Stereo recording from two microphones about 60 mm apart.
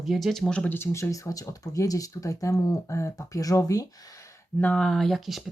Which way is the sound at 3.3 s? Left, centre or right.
Left.